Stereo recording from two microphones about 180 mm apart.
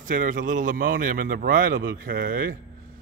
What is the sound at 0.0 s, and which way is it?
A man's voice, 45° right (ahead or behind).